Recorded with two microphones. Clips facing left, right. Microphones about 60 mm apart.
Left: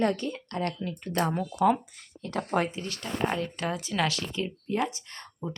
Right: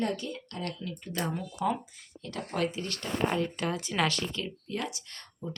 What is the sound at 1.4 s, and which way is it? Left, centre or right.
Speech, left.